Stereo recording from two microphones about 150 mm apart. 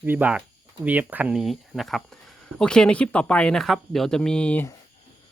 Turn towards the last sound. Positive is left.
turn(degrees=10)  # may be behind; listen again after turning